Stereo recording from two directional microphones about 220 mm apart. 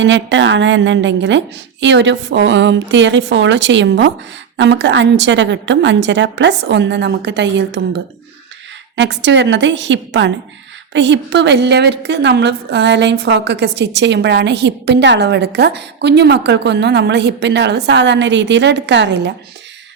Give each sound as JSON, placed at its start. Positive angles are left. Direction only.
{"t": 0.0, "sound": "a woman's voice", "side_deg": -55}